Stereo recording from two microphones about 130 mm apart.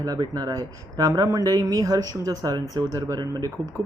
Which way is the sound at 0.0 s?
30° right (ahead or behind).